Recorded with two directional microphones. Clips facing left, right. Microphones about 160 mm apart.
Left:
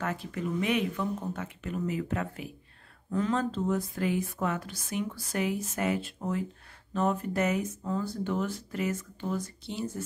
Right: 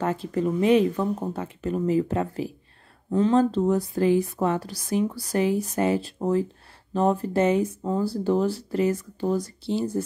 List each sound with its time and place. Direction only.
0.0 s speech: 30° right (ahead or behind)